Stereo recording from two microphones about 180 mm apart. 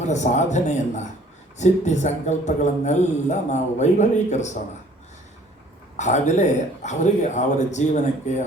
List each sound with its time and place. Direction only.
0.0 s a man's voice: 40° left (ahead or behind)
6.0 s a man's voice: 40° left (ahead or behind)